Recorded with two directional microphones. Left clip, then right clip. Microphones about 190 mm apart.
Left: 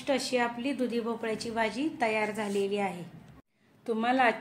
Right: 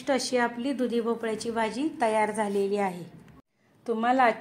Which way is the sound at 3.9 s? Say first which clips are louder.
Right 3 dB; 15° right (ahead or behind).